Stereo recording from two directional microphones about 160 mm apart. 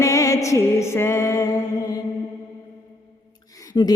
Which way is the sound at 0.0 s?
20° left (ahead or behind).